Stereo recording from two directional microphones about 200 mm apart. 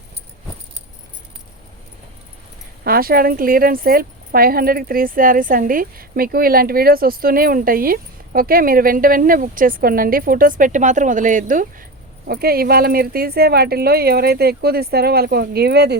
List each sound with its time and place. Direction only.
2.8 s speech: 45° right (ahead or behind)